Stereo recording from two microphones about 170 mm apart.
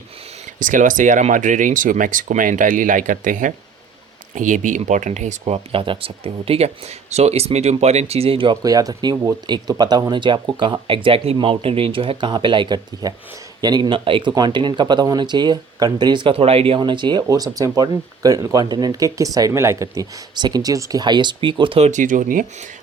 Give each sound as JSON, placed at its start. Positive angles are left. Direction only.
{"t": 0.6, "sound": "speech", "side_deg": -50}